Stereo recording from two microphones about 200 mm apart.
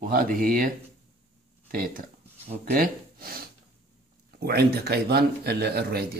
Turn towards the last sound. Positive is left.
turn(degrees=-50)  # may be behind; listen again after turning